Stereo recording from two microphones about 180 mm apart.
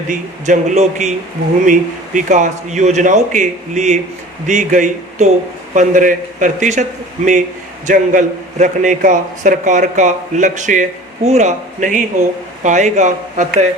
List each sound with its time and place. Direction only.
0.1 s a man's voice: 45° right (ahead or behind)
7.9 s a man's voice: 45° right (ahead or behind)